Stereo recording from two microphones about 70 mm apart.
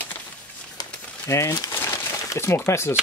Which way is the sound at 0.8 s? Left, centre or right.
Left.